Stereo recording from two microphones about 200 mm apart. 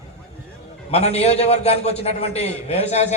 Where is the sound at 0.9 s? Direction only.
30° left (ahead or behind).